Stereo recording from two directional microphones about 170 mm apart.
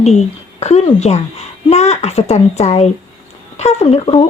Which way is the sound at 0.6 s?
40° left (ahead or behind).